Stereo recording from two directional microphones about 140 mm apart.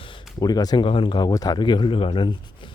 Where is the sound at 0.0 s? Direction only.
35° left (ahead or behind).